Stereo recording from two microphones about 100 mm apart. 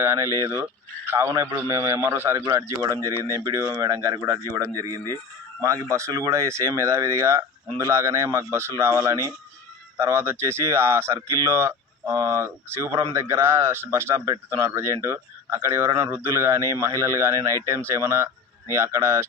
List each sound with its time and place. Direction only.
0.0 s a man's voice: 30° right (ahead or behind)